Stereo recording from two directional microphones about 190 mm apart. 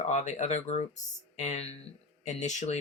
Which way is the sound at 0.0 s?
40° left (ahead or behind).